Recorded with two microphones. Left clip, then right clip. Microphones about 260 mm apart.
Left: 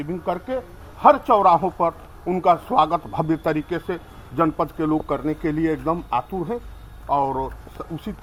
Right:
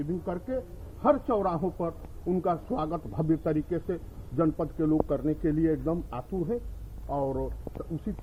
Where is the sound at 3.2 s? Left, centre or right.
Left.